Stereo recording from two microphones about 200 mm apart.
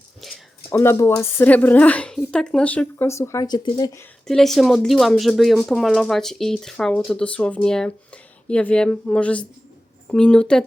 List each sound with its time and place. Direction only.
0.2 s a sound: centre (ahead or behind)
0.7 s a woman's voice: 15° left (ahead or behind)
4.3 s speech: centre (ahead or behind)